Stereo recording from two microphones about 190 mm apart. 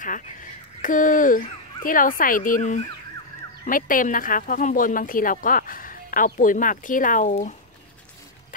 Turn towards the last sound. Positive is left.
turn(degrees=40)  # may be behind; listen again after turning